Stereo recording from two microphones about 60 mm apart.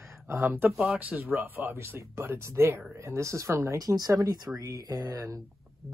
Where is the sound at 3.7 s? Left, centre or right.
Right.